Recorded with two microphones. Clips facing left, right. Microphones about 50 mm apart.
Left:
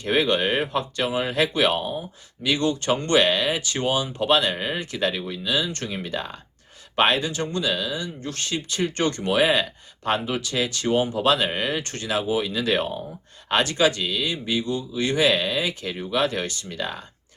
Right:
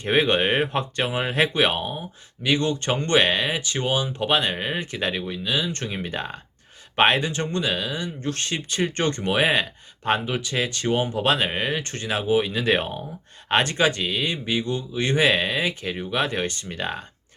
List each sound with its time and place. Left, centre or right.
0.0 s speech: right
3.5 s speech: centre; by 9.2 s right
9.2 s speech: right
16.6 s speech: right